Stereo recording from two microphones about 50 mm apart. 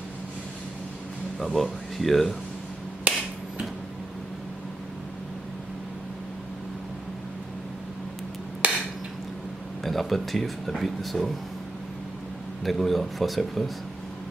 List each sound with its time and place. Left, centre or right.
1.4 s speech: centre
3.0 s finger snapping: right
8.6 s a sound: right
9.8 s speech: centre
12.6 s speech: centre